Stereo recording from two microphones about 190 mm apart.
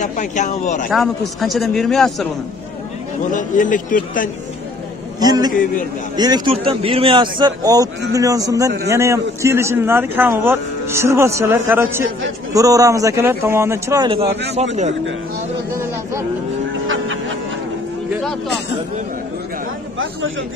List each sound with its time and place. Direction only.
0.0 s speech: 40° left (ahead or behind)
0.8 s a man's voice: centre (ahead or behind)
3.3 s a man's voice: 45° left (ahead or behind)
5.2 s speech: 20° right (ahead or behind)
5.5 s a man's voice: 45° left (ahead or behind)
6.1 s a man's voice: 20° right (ahead or behind)
14.3 s a man's voice: 65° right (ahead or behind)
16.8 s music: 90° right
18.1 s a sound: centre (ahead or behind)
20.0 s speech: 90° right